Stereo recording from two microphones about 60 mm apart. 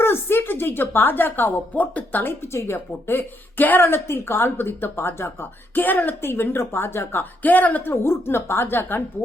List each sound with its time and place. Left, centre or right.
0.0 s a woman's voice: left
2.2 s a woman's voice: left
2.7 s speech: left